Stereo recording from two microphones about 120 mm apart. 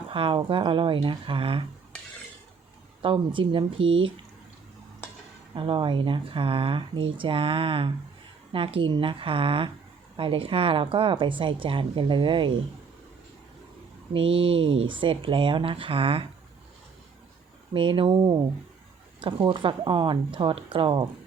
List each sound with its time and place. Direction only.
0.1 s a woman's voice: 45° right (ahead or behind)
3.0 s a woman's voice: 45° right (ahead or behind)
5.5 s a woman's voice: 45° right (ahead or behind)
14.1 s a woman's voice: 50° right (ahead or behind)
17.7 s a woman's voice: 45° right (ahead or behind)